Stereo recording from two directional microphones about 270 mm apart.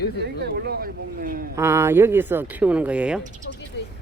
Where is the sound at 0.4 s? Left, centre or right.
Right.